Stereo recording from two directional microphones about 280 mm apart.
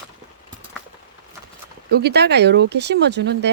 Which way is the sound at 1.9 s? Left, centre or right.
Right.